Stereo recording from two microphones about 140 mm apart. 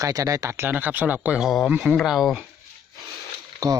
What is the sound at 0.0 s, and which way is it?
Speech, 25° right (ahead or behind).